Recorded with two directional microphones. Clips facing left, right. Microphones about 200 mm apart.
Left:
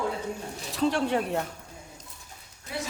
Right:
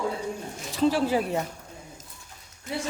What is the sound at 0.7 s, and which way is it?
Speech, centre (ahead or behind).